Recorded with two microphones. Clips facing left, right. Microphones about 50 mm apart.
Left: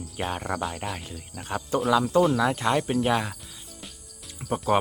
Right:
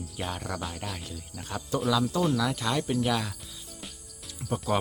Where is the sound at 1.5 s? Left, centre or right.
Left.